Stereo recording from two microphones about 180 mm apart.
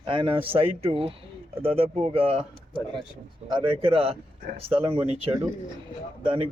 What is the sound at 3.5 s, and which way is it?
Speech, 30° right (ahead or behind).